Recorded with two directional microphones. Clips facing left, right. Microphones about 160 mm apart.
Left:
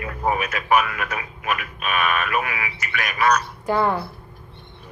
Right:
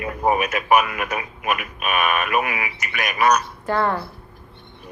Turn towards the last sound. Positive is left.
turn(degrees=10)  # may be behind; listen again after turning